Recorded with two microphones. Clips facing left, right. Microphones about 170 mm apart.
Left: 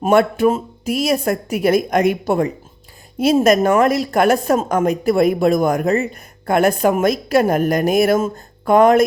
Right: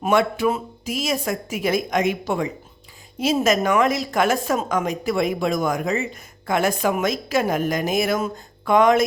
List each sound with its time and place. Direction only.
0.0 s a woman's voice: 50° left (ahead or behind)